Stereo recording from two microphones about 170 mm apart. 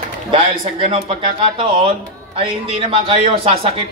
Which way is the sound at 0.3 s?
35° right (ahead or behind).